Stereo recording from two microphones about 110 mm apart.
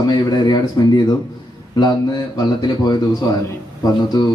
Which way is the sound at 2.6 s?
40° left (ahead or behind).